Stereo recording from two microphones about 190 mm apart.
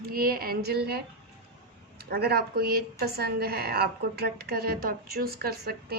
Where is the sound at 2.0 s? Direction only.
55° right (ahead or behind).